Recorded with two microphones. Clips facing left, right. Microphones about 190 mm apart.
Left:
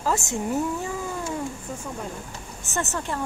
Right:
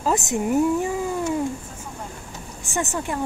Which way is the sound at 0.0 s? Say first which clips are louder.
Right 3 dB; 20° right (ahead or behind).